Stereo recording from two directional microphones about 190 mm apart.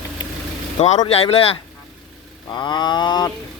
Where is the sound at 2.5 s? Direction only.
25° left (ahead or behind).